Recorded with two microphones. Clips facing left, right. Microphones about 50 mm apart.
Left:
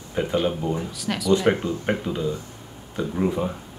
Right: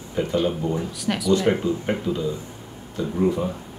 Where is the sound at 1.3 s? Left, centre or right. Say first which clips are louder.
Even; centre.